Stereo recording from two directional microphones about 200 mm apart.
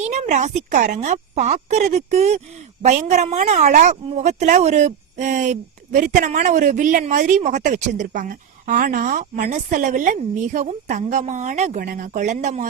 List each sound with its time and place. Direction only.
0.0 s a woman's voice: 35° right (ahead or behind)